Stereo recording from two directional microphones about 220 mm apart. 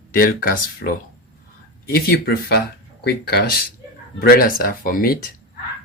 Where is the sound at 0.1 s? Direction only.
40° left (ahead or behind).